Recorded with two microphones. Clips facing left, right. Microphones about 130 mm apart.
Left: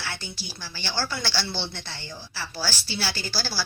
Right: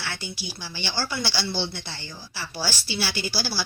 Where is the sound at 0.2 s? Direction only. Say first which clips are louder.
Right 3 dB; 15° right (ahead or behind).